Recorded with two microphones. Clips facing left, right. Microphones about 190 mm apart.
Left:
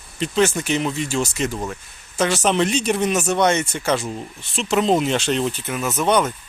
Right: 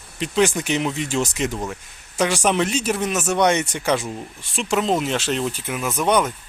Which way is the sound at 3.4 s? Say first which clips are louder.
Even; 15° right (ahead or behind).